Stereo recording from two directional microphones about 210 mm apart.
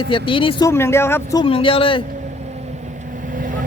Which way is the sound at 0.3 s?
25° left (ahead or behind).